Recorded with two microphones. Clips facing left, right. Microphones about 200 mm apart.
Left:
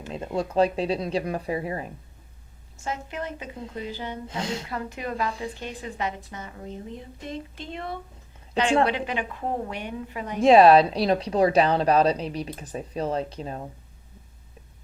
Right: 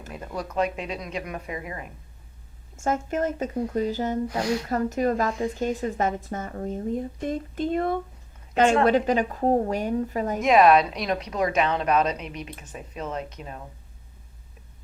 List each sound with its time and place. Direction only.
0.1 s a woman's voice: 25° left (ahead or behind)
2.7 s speech: 50° right (ahead or behind)
4.3 s speech: 25° left (ahead or behind)
4.7 s a woman's voice: 45° right (ahead or behind)
10.4 s a woman's voice: 30° left (ahead or behind)